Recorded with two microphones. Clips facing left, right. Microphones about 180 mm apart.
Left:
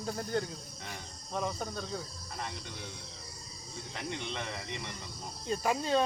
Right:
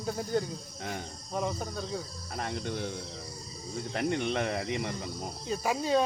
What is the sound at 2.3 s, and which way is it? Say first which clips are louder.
Speech: right 8 dB; 55° right (ahead or behind).